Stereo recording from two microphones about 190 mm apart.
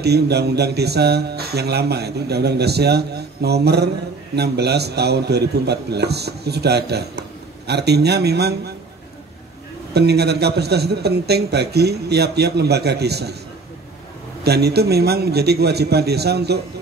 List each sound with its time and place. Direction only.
0.0 s a man's voice: 60° right (ahead or behind)
9.9 s a man's voice: 60° right (ahead or behind)
14.4 s a man's voice: 60° right (ahead or behind)